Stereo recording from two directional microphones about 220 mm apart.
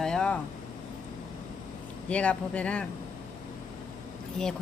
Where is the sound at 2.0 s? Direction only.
5° left (ahead or behind).